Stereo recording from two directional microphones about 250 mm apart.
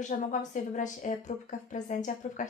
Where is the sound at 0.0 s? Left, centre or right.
Left.